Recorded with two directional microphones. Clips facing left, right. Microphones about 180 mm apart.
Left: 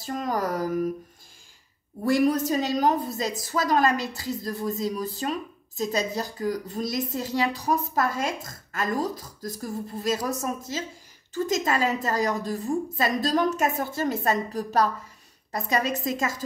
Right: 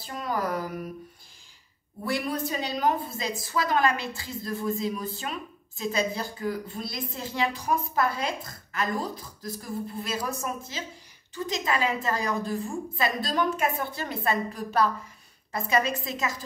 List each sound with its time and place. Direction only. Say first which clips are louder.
0.0 s a woman's voice: left 3 dB; 45° left (ahead or behind)
2.0 s a woman's voice: left 8 dB; 45° left (ahead or behind)